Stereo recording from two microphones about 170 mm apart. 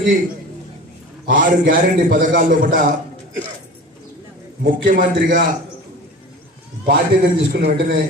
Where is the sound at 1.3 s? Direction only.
50° right (ahead or behind).